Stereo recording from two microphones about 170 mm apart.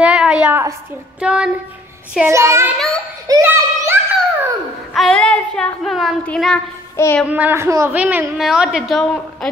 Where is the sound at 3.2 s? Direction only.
20° right (ahead or behind).